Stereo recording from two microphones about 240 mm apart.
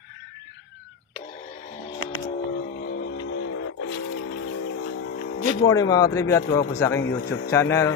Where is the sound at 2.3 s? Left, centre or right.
Left.